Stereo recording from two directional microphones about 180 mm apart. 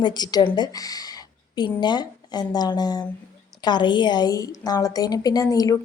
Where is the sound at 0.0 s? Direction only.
25° left (ahead or behind).